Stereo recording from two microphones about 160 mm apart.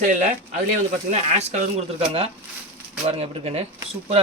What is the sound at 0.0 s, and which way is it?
Speech, 50° right (ahead or behind).